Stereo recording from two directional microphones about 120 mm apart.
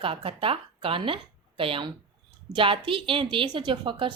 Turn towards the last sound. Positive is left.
turn(degrees=-45)  # may be behind; listen again after turning